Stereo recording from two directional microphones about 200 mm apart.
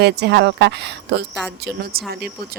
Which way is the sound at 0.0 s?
55° right (ahead or behind).